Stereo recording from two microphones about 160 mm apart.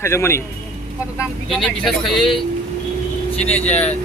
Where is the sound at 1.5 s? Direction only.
Centre (ahead or behind).